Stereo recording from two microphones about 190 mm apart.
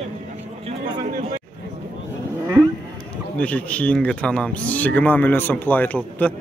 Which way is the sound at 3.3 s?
5° left (ahead or behind).